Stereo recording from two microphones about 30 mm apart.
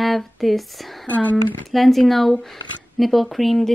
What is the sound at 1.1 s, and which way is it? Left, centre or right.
Speech, left.